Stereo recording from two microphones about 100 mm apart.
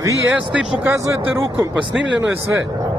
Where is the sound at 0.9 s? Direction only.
30° right (ahead or behind).